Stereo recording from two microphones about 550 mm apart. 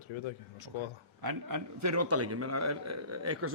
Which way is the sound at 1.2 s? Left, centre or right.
Right.